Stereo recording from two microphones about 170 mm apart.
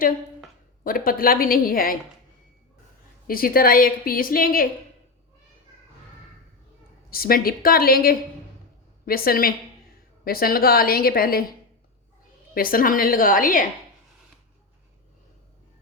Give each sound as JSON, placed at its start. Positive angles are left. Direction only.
{"t": 0.9, "sound": "a woman's voice", "side_deg": 55}
{"t": 3.2, "sound": "a woman's voice", "side_deg": 60}
{"t": 7.1, "sound": "a woman's voice", "side_deg": 60}
{"t": 12.5, "sound": "a woman's voice", "side_deg": 55}